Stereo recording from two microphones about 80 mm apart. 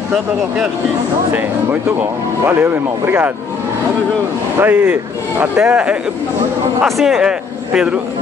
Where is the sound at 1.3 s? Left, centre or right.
Right.